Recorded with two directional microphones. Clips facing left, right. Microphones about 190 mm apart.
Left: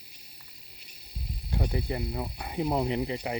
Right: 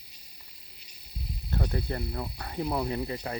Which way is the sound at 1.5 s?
15° left (ahead or behind).